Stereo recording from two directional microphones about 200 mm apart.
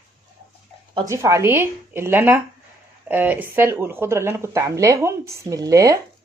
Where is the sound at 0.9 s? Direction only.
15° right (ahead or behind).